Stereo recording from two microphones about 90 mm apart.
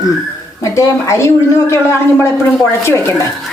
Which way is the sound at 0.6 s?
35° left (ahead or behind).